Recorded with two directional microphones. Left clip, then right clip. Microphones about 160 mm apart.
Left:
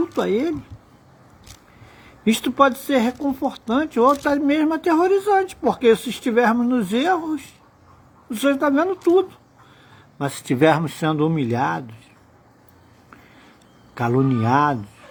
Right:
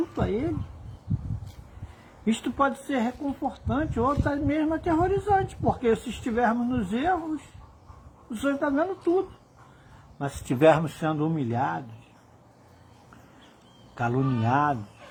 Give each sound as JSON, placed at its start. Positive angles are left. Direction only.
{"t": 0.2, "sound": "speech", "side_deg": 45}
{"t": 2.2, "sound": "speech", "side_deg": 40}
{"t": 8.4, "sound": "speech", "side_deg": 40}
{"t": 10.2, "sound": "speech", "side_deg": 25}
{"t": 11.0, "sound": "speech", "side_deg": 30}
{"t": 13.9, "sound": "speech", "side_deg": 25}